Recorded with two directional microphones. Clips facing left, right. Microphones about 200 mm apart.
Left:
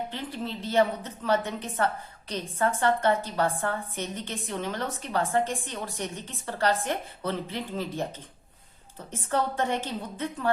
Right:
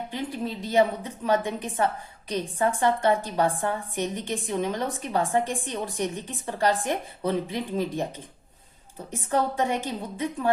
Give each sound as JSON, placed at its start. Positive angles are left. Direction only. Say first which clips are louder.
{"t": 0.1, "sound": "a woman's voice", "louder": "right 3 dB", "side_deg": -15}
{"t": 9.3, "sound": "a woman's voice", "louder": "right 2 dB", "side_deg": -15}